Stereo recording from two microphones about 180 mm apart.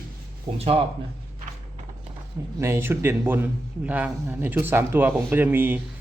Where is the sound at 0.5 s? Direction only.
35° right (ahead or behind).